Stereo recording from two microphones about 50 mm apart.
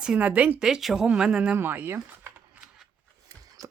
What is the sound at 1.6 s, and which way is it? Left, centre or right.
Speech, right.